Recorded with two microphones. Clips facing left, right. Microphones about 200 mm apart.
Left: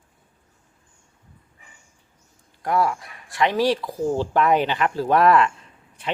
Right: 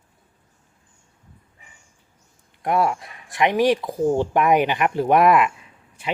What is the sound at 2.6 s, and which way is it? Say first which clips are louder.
Speech: right 1 dB; 25° right (ahead or behind).